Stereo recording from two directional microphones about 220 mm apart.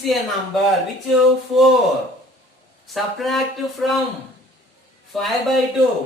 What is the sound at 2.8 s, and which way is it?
Speech, centre (ahead or behind).